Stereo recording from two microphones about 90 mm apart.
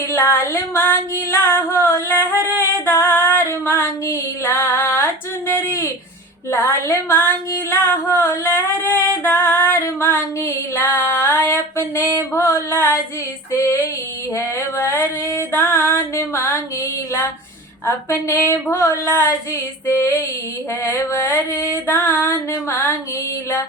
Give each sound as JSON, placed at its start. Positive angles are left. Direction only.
{"t": 0.1, "sound": "female singing", "side_deg": 30}
{"t": 7.7, "sound": "music", "side_deg": 25}
{"t": 10.0, "sound": "female singing", "side_deg": 25}